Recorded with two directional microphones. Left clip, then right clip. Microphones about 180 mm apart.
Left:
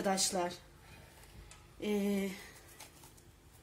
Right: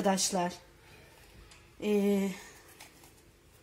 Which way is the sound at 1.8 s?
35° right (ahead or behind).